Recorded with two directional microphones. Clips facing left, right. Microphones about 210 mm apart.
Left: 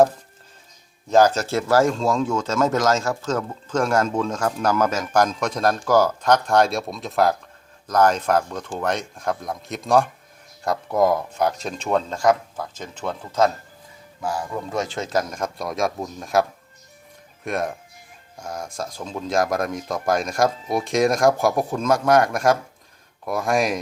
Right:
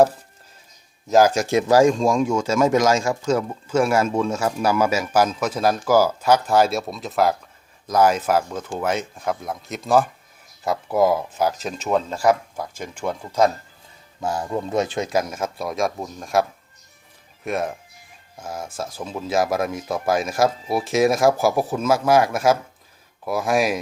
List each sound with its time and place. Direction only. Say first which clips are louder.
1.1 s speech: right 1 dB; 10° right (ahead or behind)
14.2 s speech: right 2 dB; 25° right (ahead or behind); by 23.8 s 5° right (ahead or behind)